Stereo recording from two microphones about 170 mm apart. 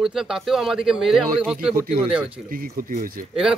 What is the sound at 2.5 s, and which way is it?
Speech, 55° right (ahead or behind).